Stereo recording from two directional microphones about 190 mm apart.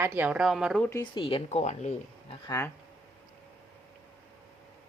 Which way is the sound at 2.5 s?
15° left (ahead or behind).